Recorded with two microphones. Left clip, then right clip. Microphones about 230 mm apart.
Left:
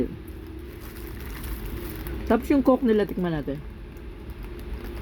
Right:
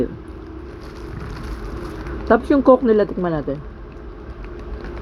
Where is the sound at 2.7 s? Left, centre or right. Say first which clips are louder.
Right 10 dB; left.